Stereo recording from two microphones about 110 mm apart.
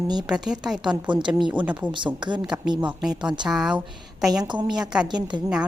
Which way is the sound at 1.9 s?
45° right (ahead or behind).